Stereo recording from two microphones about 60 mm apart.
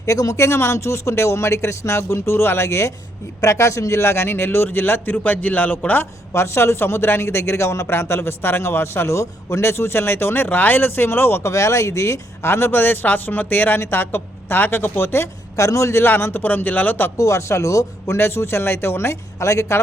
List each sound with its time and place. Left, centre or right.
0.0 s a man's voice: left
6.3 s a man's voice: left
11.5 s speech: left
15.5 s speech: left
17.2 s speech: left
18.2 s a man's voice: left